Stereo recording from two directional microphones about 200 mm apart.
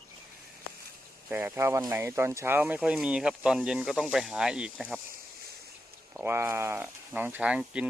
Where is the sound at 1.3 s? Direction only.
10° right (ahead or behind).